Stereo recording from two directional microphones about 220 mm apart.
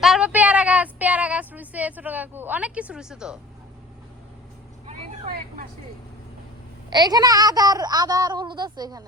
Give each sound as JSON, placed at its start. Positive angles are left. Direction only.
{"t": 0.0, "sound": "a sound", "side_deg": -5}
{"t": 4.9, "sound": "vehicle", "side_deg": -35}
{"t": 6.9, "sound": "a woman's voice", "side_deg": -20}